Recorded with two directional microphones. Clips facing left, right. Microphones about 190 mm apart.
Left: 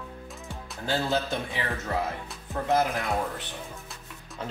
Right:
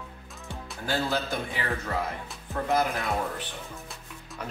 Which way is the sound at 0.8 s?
20° left (ahead or behind).